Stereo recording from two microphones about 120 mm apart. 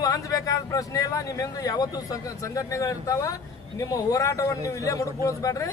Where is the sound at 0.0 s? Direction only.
30° left (ahead or behind).